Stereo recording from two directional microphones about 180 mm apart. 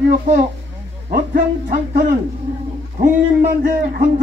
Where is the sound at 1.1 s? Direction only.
50° right (ahead or behind).